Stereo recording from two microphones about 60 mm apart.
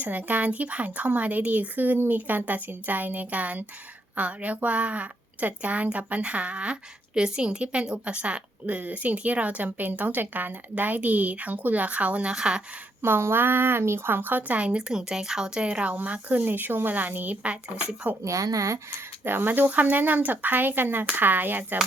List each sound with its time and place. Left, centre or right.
0.0 s a woman's voice: right
13.0 s a woman's voice: right; by 18.2 s centre
18.3 s speech: right
19.2 s speech: right